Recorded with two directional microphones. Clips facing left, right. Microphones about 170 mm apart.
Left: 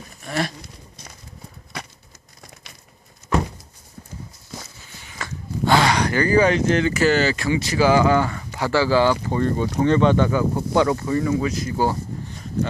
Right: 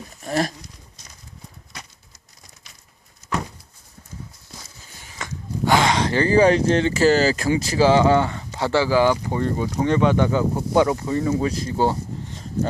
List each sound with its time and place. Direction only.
0.3 s speech: 40° right (ahead or behind)
0.6 s a sound: 60° left (ahead or behind)
5.1 s speech: 15° right (ahead or behind)